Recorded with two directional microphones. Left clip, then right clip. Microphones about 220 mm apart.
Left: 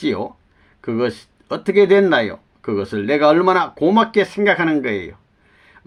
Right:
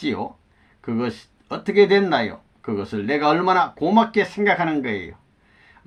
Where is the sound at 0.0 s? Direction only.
30° left (ahead or behind).